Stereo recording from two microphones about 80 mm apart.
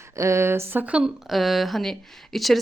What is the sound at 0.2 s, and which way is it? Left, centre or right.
Speech, right.